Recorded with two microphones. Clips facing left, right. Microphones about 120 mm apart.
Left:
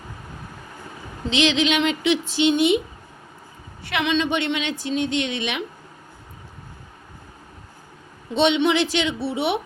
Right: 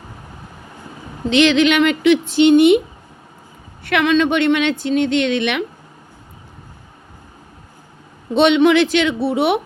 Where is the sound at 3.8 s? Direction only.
55° right (ahead or behind).